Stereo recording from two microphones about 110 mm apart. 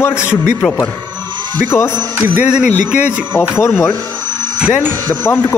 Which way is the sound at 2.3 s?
15° right (ahead or behind).